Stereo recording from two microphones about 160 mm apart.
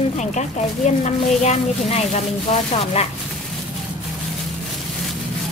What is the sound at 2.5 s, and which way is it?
Speech, 40° left (ahead or behind).